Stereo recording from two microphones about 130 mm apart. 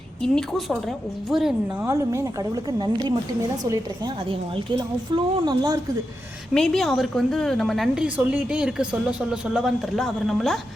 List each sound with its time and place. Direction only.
0.2 s a woman's voice: centre (ahead or behind)
1.8 s speech: 20° right (ahead or behind)
4.8 s speech: 30° right (ahead or behind)
6.5 s a woman's voice: centre (ahead or behind)
8.0 s a woman's voice: 10° right (ahead or behind)